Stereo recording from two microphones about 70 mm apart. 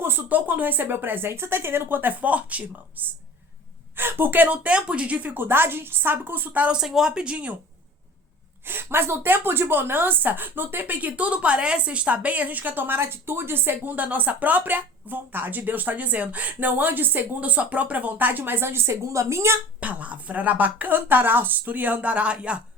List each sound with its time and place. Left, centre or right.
0.0 s a woman's voice: right
6.7 s speech: centre
8.6 s a woman's voice: right
19.8 s a woman's voice: right